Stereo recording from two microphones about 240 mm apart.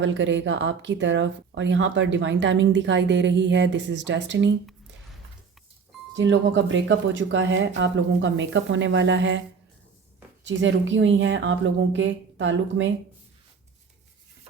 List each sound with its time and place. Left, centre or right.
0.0 s speech: right
6.1 s speech: right
10.4 s speech: right